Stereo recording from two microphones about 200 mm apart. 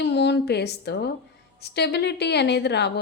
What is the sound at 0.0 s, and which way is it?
A woman's voice, 60° left (ahead or behind).